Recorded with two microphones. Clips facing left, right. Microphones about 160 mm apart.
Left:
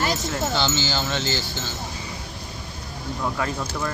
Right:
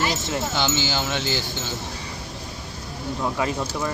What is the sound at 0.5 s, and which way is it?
Speech, 15° right (ahead or behind).